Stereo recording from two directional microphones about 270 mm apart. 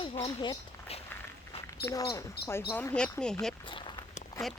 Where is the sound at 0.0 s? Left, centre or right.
Left; by 3.5 s centre.